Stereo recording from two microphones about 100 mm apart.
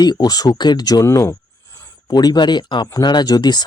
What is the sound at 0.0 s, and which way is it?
Speech, 45° left (ahead or behind).